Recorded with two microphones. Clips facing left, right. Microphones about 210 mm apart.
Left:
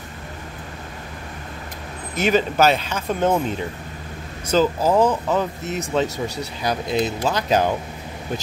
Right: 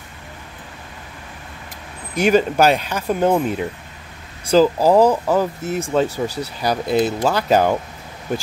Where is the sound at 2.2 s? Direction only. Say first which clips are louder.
Right 3 dB; 10° right (ahead or behind).